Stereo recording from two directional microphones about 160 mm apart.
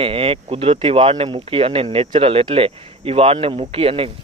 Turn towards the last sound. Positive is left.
turn(degrees=-35)  # may be behind; listen again after turning